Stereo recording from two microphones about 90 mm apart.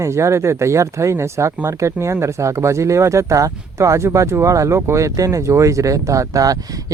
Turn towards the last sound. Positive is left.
turn(degrees=-40)  # may be behind; listen again after turning